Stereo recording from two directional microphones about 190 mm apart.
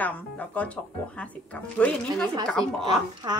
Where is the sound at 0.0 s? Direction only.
5° left (ahead or behind).